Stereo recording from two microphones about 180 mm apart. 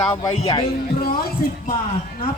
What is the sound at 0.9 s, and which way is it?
Speech, 55° left (ahead or behind).